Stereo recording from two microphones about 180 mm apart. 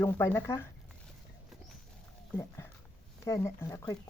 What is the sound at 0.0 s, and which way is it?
Speech, 15° left (ahead or behind).